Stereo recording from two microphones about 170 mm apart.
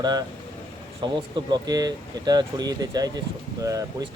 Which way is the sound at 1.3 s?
25° right (ahead or behind).